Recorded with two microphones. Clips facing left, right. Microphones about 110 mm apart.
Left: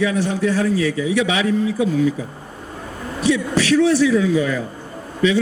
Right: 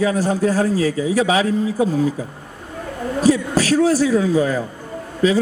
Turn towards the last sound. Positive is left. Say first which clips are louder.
# right 1 dB
turn(degrees=-40)  # may be behind; listen again after turning